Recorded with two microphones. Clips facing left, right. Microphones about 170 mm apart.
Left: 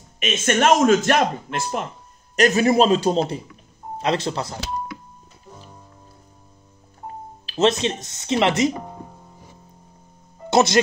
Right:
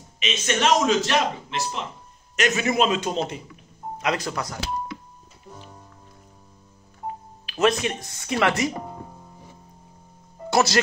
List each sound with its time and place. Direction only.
0.2 s speech: 50° left (ahead or behind)
2.3 s speech: 35° left (ahead or behind)
7.4 s speech: 25° left (ahead or behind)
10.5 s speech: 20° left (ahead or behind)